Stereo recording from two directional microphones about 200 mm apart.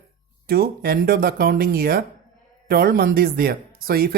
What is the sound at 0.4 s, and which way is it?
Speech, 50° right (ahead or behind).